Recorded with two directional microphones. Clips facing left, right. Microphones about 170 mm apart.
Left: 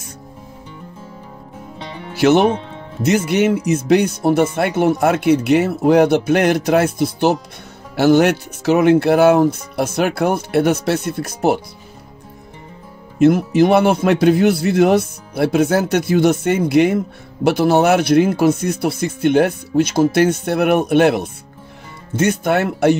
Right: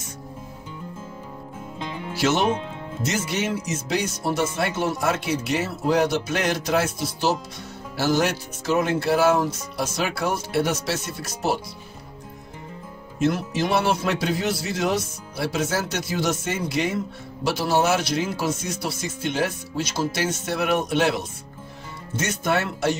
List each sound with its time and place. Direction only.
2.1 s a man's voice: 60° left (ahead or behind)
13.2 s a man's voice: 55° left (ahead or behind)